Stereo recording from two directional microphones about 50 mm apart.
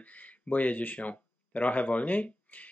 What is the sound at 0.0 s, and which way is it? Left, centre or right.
Speech, left.